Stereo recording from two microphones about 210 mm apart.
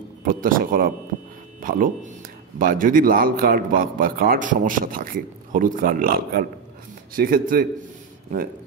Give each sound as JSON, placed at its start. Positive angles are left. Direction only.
{"t": 0.2, "sound": "a man's voice", "side_deg": -40}